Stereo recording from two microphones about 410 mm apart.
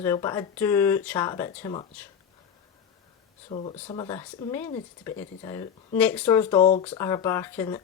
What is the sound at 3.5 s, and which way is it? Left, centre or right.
Speech, centre.